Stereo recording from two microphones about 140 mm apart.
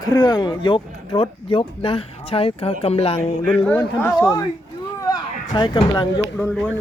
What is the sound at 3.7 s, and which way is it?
Speech, 15° left (ahead or behind).